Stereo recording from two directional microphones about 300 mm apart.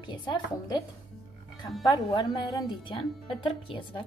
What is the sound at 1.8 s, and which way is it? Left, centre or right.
Speech, centre.